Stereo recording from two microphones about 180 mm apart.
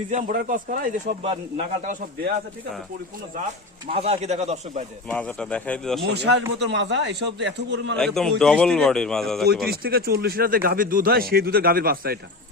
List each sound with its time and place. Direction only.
0.1 s speech: 45° right (ahead or behind)
1.2 s speech: 35° right (ahead or behind)
3.8 s speech: 35° right (ahead or behind)
5.0 s speech: 5° left (ahead or behind)
6.1 s a man's voice: 75° right (ahead or behind)
7.9 s speech: 5° left (ahead or behind)
9.6 s speech: 60° right (ahead or behind)